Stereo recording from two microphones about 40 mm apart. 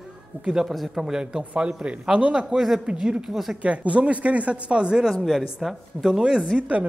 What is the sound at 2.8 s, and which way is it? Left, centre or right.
Speech, right.